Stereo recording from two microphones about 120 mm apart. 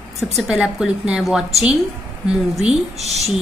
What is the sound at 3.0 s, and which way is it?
Speech, 65° right (ahead or behind).